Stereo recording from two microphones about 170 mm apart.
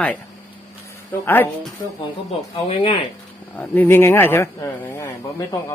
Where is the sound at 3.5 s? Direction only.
10° left (ahead or behind).